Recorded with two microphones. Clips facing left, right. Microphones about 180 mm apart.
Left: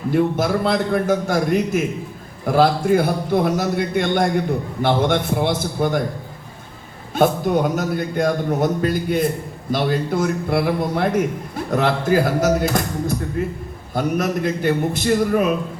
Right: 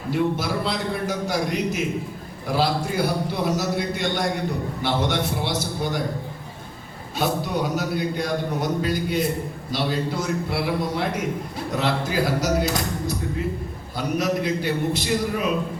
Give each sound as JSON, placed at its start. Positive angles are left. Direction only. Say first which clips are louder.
{"t": 0.1, "sound": "a man's voice", "louder": "left 5 dB", "side_deg": 50}
{"t": 7.2, "sound": "a man's voice", "louder": "left 7 dB", "side_deg": 50}